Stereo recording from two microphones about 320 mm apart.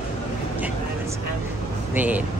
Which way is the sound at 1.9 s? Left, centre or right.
Centre.